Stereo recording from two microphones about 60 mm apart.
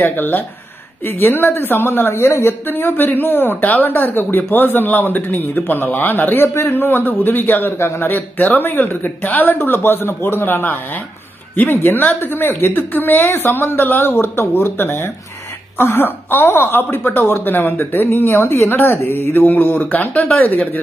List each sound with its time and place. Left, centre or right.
0.0 s speech: left
2.6 s speech: left